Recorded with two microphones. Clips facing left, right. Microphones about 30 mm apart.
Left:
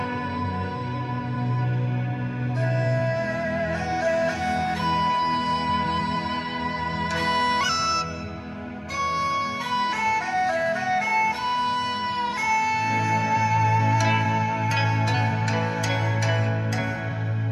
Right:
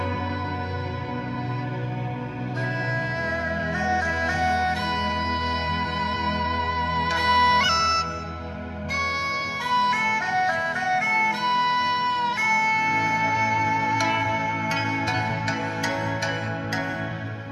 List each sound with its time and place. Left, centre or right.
3.8 s music: centre
4.1 s music: centre
6.8 s music: right
8.9 s music: right
14.0 s music: centre